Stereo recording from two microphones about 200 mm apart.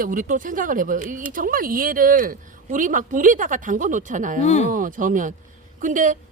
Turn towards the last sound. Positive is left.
turn(degrees=-40)  # may be behind; listen again after turning